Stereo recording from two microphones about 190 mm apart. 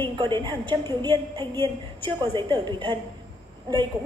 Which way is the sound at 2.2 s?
25° right (ahead or behind).